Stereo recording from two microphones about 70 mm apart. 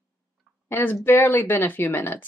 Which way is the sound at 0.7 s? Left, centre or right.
Left.